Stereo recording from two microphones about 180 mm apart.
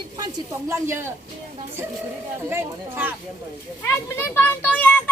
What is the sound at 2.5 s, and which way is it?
Speech, 10° right (ahead or behind).